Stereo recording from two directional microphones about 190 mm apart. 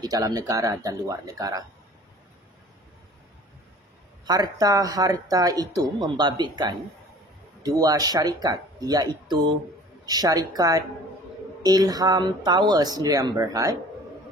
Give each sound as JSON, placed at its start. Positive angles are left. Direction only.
{"t": 0.0, "sound": "speech", "side_deg": -20}
{"t": 4.3, "sound": "speech", "side_deg": -20}